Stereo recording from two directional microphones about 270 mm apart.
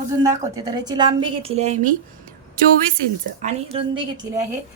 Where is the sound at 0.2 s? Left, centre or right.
Centre.